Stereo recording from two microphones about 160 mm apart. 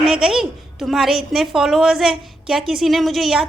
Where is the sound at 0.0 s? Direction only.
5° right (ahead or behind).